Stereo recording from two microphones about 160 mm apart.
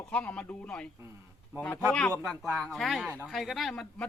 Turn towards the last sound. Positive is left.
turn(degrees=5)  # may be behind; listen again after turning